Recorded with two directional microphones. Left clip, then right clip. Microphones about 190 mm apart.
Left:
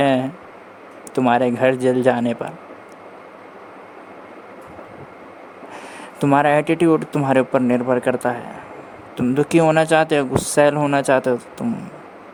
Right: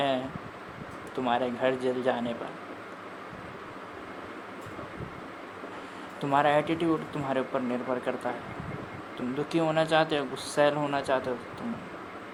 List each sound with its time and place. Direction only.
0.0 s speech: 60° left (ahead or behind)
6.2 s speech: 60° left (ahead or behind)